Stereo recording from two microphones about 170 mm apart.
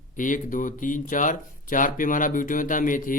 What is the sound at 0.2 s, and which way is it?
Speech, 50° left (ahead or behind).